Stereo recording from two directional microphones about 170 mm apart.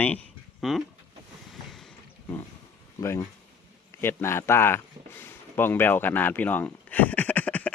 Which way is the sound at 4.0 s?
15° left (ahead or behind).